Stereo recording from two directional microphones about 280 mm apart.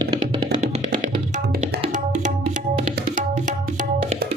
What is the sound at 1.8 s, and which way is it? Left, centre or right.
Tabla, right.